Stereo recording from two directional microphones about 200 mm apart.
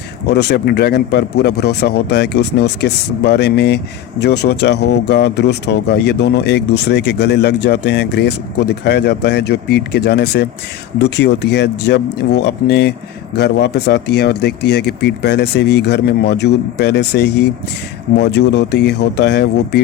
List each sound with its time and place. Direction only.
0.3 s speech: 55° left (ahead or behind)